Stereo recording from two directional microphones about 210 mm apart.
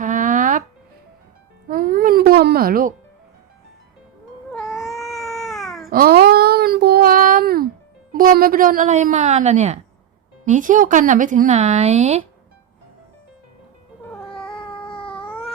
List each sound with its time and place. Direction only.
0.0 s music: 40° right (ahead or behind)
1.6 s music: 40° right (ahead or behind)
4.7 s baby cry: centre (ahead or behind)
5.9 s a sound: 45° right (ahead or behind)
8.1 s speech: 45° right (ahead or behind)
14.1 s cat: 5° left (ahead or behind)
14.7 s baby cry: 25° left (ahead or behind)
15.3 s cat: 5° left (ahead or behind)